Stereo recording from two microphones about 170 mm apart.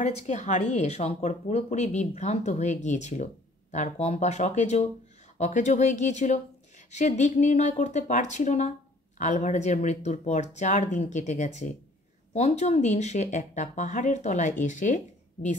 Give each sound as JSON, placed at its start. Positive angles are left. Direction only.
{"t": 0.0, "sound": "speech", "side_deg": 45}